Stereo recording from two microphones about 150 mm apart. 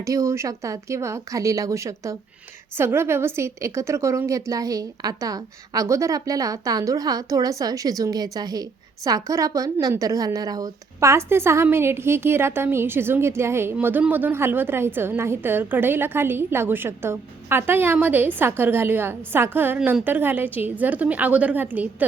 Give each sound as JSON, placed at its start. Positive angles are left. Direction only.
{"t": 0.0, "sound": "a woman's voice", "side_deg": -20}